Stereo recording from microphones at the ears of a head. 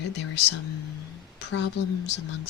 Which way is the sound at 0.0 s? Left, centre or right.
Left.